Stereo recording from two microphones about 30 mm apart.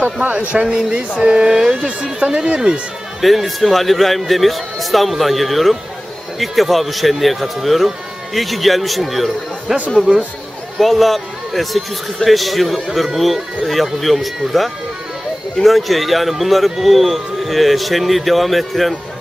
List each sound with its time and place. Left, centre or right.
0.0 s a man's voice: right
1.1 s speech: right
1.5 s speech: right
2.1 s speech: right
3.2 s speech: centre
10.8 s a man's voice: centre